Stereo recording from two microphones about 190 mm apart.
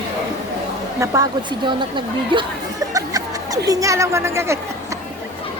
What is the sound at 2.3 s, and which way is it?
Music, 20° right (ahead or behind).